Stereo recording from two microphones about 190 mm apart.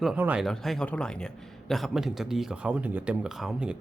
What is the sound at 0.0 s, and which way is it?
A man's voice, 5° right (ahead or behind).